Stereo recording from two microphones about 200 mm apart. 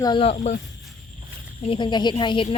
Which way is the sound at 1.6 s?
25° left (ahead or behind).